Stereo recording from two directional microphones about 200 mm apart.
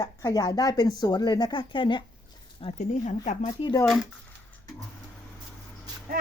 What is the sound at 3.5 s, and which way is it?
Speech, 20° left (ahead or behind).